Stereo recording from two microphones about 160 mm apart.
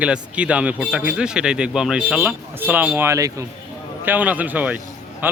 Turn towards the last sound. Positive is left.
turn(degrees=-10)  # may be behind; listen again after turning